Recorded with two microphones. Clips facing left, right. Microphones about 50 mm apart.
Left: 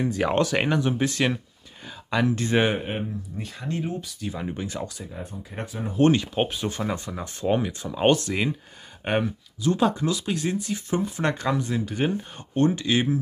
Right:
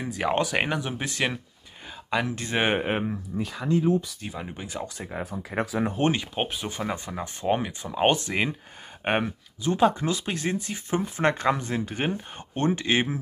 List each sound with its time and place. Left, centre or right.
0.0 s speech: centre
2.8 s speech: right
4.3 s speech: centre
5.0 s speech: right
5.9 s speech: centre